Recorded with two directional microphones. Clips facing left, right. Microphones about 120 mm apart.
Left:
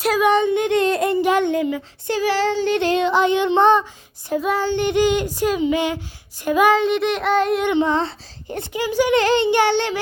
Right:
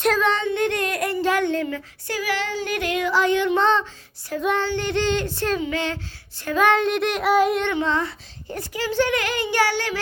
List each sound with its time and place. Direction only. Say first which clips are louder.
0.0 s speech: left 4 dB; 10° left (ahead or behind)
4.4 s female singing: left 3 dB; 10° left (ahead or behind)
6.7 s child singing: left 3 dB; centre (ahead or behind)
7.6 s a child's voice: left 4 dB; 15° left (ahead or behind)
9.1 s a child's voice: left 6 dB; 25° left (ahead or behind)